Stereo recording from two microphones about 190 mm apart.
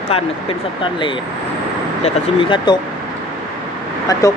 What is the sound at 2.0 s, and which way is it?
Speech, 25° left (ahead or behind).